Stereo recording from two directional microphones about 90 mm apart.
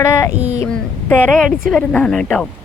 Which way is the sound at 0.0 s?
30° left (ahead or behind).